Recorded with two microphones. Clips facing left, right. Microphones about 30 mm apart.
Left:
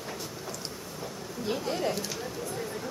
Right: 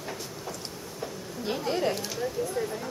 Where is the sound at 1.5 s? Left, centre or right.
Centre.